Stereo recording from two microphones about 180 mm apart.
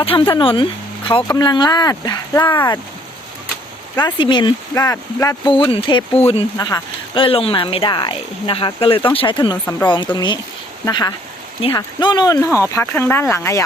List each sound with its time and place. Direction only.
0.0 s speech: 30° left (ahead or behind)
4.0 s speech: 25° left (ahead or behind)